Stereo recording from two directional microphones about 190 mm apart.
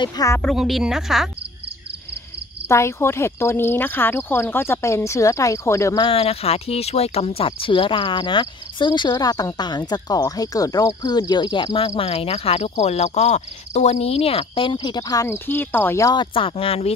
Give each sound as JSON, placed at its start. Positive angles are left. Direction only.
{"t": 0.0, "sound": "speech", "side_deg": 20}
{"t": 0.4, "sound": "speech", "side_deg": 0}
{"t": 2.7, "sound": "speech", "side_deg": 15}
{"t": 6.0, "sound": "speech", "side_deg": 30}